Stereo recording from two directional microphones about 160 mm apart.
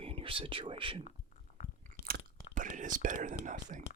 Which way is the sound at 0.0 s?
35° right (ahead or behind).